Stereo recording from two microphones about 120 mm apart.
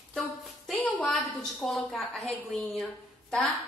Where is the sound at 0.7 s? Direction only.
5° left (ahead or behind).